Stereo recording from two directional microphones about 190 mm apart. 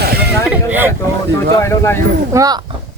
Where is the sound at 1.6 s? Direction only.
15° left (ahead or behind).